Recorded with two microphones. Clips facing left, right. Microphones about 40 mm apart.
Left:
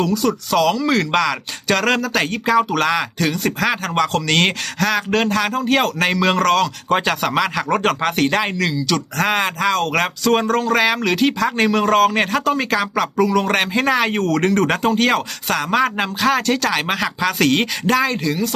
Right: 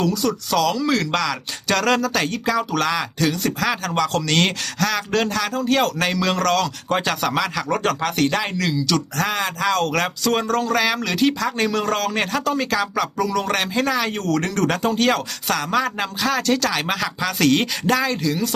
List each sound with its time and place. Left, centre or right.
0.0 s speech: centre
8.5 s speech: centre
9.2 s speech: left; by 18.5 s centre